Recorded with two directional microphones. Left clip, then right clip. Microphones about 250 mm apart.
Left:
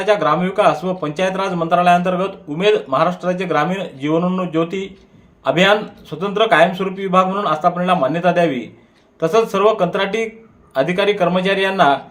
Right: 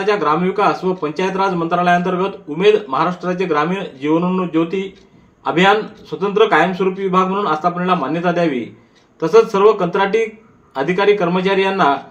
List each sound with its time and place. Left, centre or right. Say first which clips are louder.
0.0 s speech: even; left